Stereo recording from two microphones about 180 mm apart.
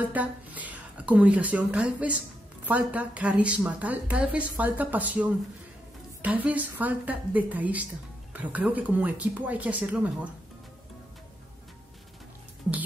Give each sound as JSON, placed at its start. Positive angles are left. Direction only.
{"t": 0.0, "sound": "a woman's voice", "side_deg": -10}